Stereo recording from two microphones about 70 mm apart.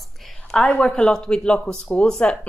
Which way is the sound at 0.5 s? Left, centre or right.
Centre.